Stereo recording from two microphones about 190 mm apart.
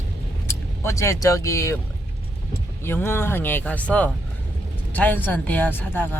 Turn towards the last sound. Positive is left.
turn(degrees=10)  # may be behind; listen again after turning